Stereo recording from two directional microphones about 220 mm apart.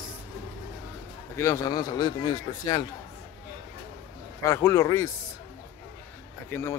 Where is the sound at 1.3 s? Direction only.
15° left (ahead or behind).